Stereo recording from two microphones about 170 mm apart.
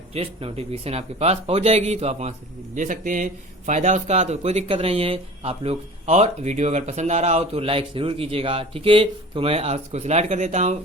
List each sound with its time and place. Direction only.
0.1 s speech: 35° right (ahead or behind)